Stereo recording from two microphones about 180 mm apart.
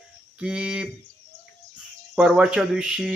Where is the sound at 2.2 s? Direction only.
5° right (ahead or behind).